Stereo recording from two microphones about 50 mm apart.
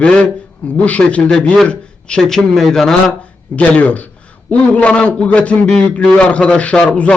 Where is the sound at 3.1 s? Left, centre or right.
Left.